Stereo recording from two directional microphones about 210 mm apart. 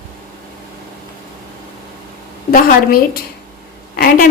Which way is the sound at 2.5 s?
45° left (ahead or behind).